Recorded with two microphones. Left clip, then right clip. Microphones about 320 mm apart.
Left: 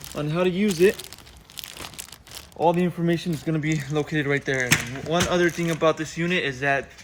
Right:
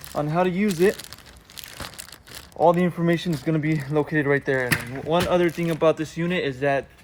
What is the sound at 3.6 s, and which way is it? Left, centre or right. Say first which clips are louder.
Speech: right 1 dB; right.